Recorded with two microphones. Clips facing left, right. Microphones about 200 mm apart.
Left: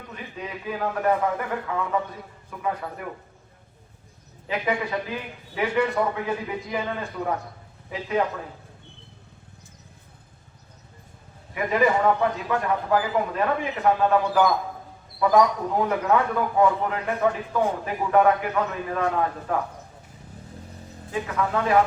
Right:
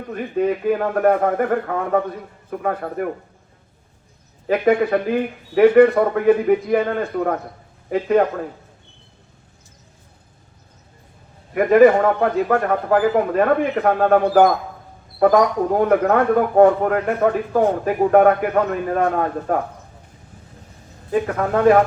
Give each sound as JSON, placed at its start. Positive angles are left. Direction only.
{"t": 0.1, "sound": "a man's voice", "side_deg": -55}
{"t": 4.4, "sound": "a man's voice", "side_deg": -55}
{"t": 11.5, "sound": "a man's voice", "side_deg": -55}
{"t": 21.1, "sound": "speech", "side_deg": -50}